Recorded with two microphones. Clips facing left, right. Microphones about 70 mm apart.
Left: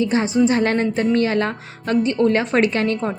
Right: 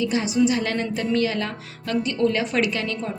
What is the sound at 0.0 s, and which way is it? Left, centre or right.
A woman's voice, left.